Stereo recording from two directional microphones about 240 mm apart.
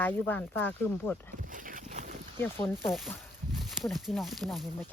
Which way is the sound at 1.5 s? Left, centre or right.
Right.